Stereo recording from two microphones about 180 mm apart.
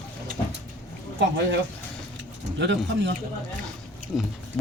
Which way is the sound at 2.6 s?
75° right (ahead or behind).